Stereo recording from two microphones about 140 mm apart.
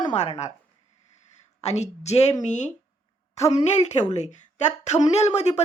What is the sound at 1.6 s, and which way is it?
A woman's voice, 50° left (ahead or behind).